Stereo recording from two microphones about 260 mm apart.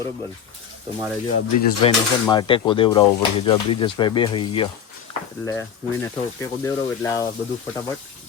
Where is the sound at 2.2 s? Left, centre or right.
Centre.